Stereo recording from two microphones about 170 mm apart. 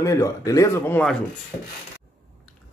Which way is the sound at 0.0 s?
20° left (ahead or behind).